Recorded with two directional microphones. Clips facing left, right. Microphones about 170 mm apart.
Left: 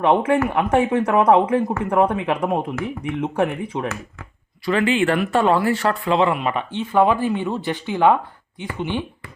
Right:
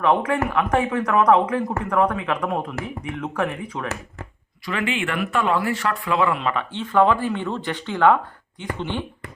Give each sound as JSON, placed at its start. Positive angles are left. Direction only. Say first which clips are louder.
{"t": 0.0, "sound": "speech", "louder": "left 3 dB", "side_deg": 30}